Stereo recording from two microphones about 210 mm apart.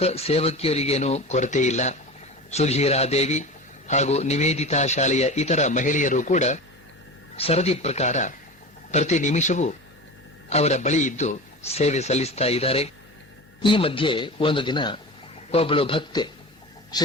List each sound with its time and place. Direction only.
0.0 s speech: 30° left (ahead or behind)